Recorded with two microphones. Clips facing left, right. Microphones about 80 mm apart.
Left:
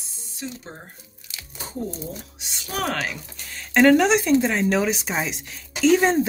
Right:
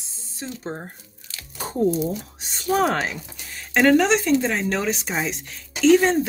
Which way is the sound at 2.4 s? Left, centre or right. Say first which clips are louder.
Right 12 dB; right.